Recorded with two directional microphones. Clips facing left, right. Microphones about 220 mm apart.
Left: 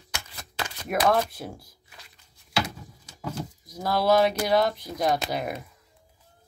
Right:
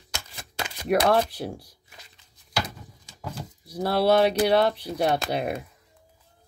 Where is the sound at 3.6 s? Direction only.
30° right (ahead or behind).